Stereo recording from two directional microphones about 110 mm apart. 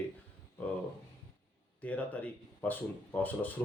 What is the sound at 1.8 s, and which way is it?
Speech, 10° left (ahead or behind).